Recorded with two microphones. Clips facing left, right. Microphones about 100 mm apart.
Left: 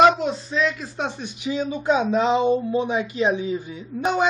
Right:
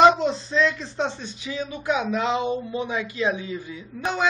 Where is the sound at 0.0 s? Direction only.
5° left (ahead or behind).